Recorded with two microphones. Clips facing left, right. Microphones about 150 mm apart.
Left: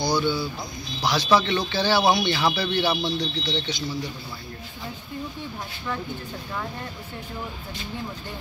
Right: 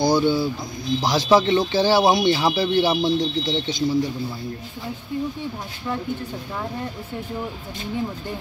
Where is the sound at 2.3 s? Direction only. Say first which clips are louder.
Right 3 dB; 15° right (ahead or behind).